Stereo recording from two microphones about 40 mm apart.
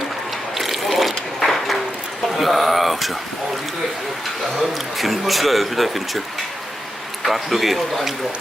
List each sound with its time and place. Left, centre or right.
0.5 s a sound: centre
4.9 s speech: centre
7.3 s speech: centre